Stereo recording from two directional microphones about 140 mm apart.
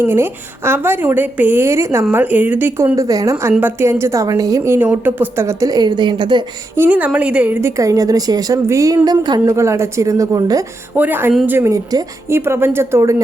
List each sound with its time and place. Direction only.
0.0 s a woman's voice: 15° right (ahead or behind); by 6.4 s 35° right (ahead or behind)
6.7 s a woman's voice: 15° right (ahead or behind)
10.9 s a woman's voice: 15° right (ahead or behind)